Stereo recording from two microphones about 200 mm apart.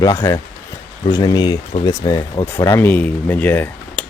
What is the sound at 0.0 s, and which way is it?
Speech, 15° left (ahead or behind).